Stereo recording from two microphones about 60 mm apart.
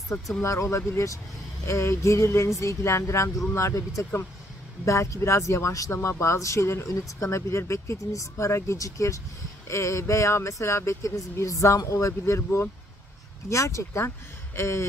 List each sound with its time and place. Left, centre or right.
0.4 s speech: left
14.0 s speech: left